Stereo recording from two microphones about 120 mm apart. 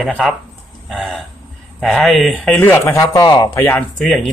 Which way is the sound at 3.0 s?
35° left (ahead or behind).